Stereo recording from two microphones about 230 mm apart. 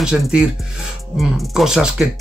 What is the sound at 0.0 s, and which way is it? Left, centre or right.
Speech, centre.